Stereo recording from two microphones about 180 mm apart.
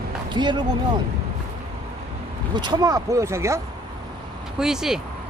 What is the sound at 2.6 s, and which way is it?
Speech, 25° right (ahead or behind).